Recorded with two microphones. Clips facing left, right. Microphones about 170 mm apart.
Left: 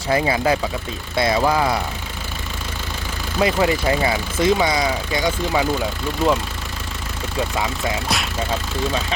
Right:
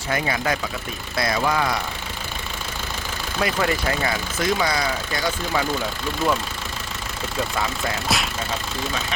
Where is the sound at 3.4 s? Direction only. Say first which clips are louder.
Left 5 dB; 20° left (ahead or behind).